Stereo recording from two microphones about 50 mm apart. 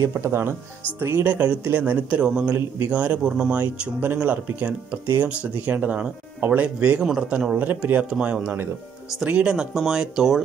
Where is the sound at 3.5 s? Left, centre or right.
Right.